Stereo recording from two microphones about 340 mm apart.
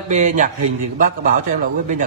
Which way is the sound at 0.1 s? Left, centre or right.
Right.